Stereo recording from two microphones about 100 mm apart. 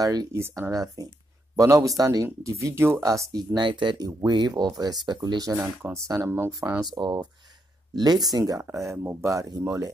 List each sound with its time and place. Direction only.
0.0 s speech: 40° right (ahead or behind)
2.6 s speech: 25° right (ahead or behind)
7.0 s speech: 45° right (ahead or behind)
8.6 s speech: 25° right (ahead or behind)